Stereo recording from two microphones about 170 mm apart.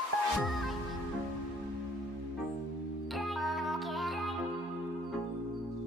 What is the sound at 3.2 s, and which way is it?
Music, centre (ahead or behind).